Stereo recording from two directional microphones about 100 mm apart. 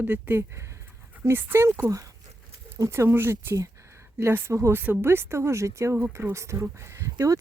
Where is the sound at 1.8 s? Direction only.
35° right (ahead or behind).